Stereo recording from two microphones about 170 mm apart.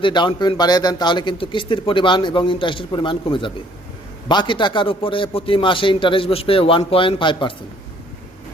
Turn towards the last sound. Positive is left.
turn(degrees=30)  # may be behind; listen again after turning